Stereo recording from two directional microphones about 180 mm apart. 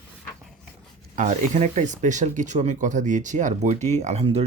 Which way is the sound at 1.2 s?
40° right (ahead or behind).